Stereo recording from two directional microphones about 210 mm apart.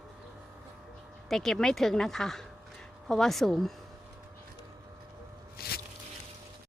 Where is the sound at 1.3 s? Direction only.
Centre (ahead or behind).